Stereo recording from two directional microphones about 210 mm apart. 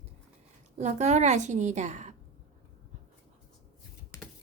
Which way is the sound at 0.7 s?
35° right (ahead or behind).